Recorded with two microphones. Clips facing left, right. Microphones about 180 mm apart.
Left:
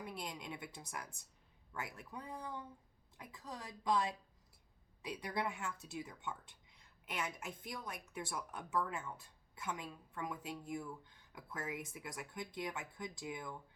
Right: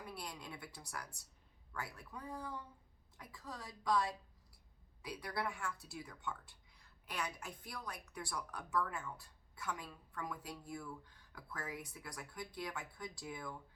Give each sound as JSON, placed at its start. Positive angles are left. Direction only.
{"t": 0.0, "sound": "a woman's voice", "side_deg": 20}